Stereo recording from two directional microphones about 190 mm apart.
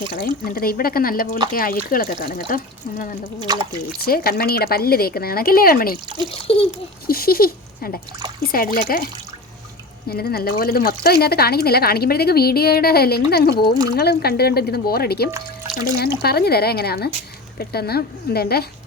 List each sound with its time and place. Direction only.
0.1 s speech: 50° left (ahead or behind)
3.5 s speech: 20° right (ahead or behind)
4.0 s speech: 55° left (ahead or behind)
6.5 s a sound: 30° left (ahead or behind)
7.1 s speech: 50° left (ahead or behind)
10.1 s speech: 55° left (ahead or behind)